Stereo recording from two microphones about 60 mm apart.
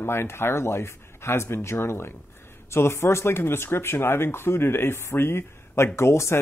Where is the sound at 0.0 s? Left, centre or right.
Left.